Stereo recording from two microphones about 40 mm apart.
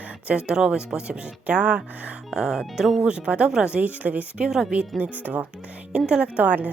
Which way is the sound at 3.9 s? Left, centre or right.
Right.